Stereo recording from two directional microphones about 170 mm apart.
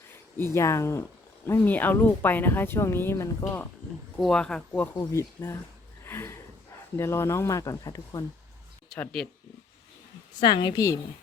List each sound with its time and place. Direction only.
0.3 s speech: 15° left (ahead or behind)
4.2 s speech: 5° left (ahead or behind); by 8.2 s 20° left (ahead or behind)
8.9 s speech: 5° left (ahead or behind)
10.4 s a woman's voice: 30° left (ahead or behind)